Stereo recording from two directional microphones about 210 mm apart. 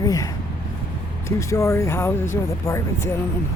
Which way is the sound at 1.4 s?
15° left (ahead or behind).